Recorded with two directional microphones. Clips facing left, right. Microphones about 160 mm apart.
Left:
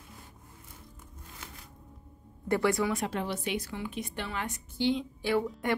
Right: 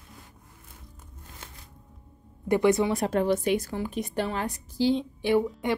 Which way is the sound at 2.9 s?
40° right (ahead or behind).